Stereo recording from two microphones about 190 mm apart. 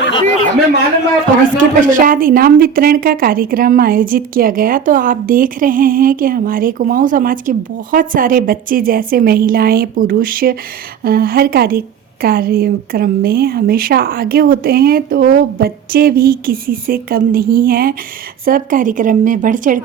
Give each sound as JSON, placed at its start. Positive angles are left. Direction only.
{"t": 1.5, "sound": "speech", "side_deg": -45}